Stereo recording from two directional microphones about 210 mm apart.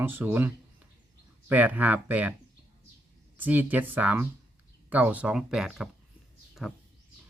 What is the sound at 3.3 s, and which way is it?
Speech, 10° right (ahead or behind).